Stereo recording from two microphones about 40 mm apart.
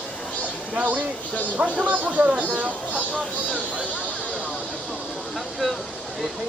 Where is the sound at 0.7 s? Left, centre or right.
Right.